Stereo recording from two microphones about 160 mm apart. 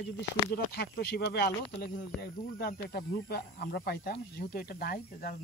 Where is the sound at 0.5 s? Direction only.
75° left (ahead or behind).